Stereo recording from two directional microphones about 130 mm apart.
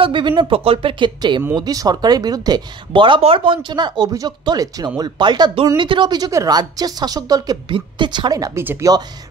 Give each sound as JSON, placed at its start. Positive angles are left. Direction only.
{"t": 0.0, "sound": "speech", "side_deg": -40}